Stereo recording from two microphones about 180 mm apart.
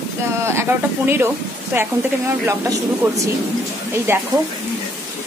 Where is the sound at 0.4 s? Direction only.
15° right (ahead or behind).